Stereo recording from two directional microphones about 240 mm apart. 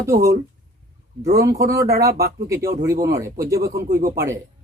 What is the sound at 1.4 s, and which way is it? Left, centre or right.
Speech, centre.